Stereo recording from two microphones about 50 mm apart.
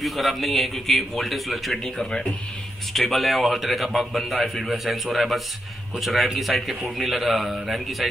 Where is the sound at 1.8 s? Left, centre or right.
Centre.